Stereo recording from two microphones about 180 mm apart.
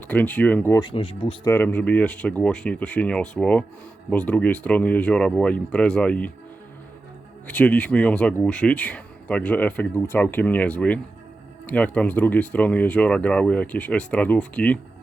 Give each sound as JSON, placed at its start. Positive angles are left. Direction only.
{"t": 0.1, "sound": "speech", "side_deg": 10}
{"t": 0.8, "sound": "speech", "side_deg": 30}
{"t": 1.5, "sound": "speech", "side_deg": 10}
{"t": 7.4, "sound": "speech", "side_deg": 10}